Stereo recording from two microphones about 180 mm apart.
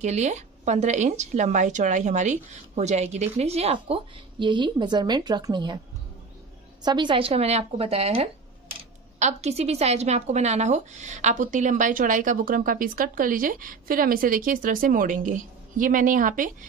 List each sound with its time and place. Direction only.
0.0 s a woman's voice: 40° right (ahead or behind)
6.8 s a woman's voice: 25° right (ahead or behind); by 16.5 s 50° right (ahead or behind)